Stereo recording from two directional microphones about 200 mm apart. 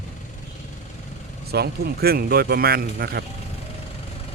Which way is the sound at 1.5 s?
50° right (ahead or behind).